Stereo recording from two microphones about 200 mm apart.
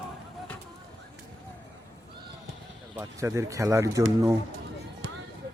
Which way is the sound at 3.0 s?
15° right (ahead or behind).